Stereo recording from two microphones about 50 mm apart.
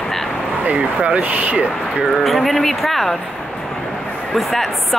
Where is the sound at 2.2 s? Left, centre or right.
Centre.